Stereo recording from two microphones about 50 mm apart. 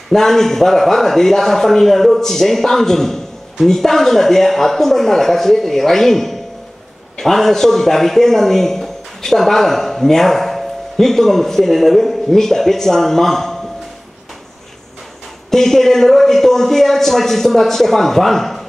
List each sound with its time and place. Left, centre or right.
0.1 s a man's voice: centre
15.5 s a man's voice: centre